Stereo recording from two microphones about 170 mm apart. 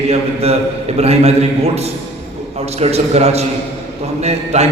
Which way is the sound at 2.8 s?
40° right (ahead or behind).